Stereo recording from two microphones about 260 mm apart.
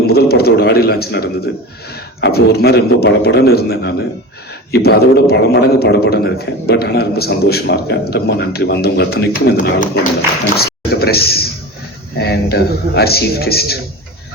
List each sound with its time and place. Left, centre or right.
0.1 s a man's voice: left